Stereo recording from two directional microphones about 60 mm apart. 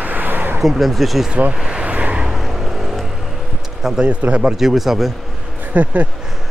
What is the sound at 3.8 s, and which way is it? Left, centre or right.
Speech, centre.